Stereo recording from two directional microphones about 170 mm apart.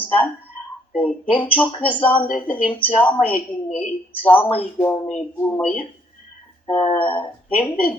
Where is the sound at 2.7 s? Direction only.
10° left (ahead or behind).